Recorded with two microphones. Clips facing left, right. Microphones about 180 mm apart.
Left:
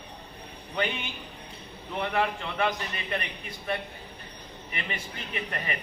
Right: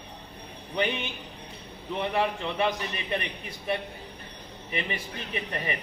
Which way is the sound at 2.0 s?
20° right (ahead or behind).